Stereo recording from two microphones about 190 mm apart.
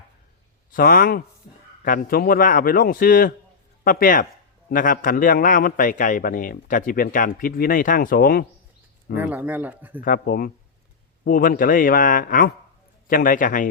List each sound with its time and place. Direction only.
0.7 s a man's voice: 50° left (ahead or behind)
9.1 s speech: 10° right (ahead or behind)
10.0 s a man's voice: 50° left (ahead or behind)